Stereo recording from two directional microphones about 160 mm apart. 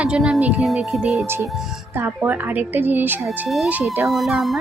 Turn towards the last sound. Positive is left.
turn(degrees=0)  # may be behind; listen again after turning